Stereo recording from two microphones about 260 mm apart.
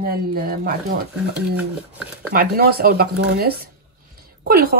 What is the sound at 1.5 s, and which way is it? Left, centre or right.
Speech, centre.